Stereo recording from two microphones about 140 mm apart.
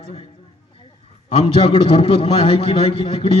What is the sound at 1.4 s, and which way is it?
A man's voice, 40° left (ahead or behind).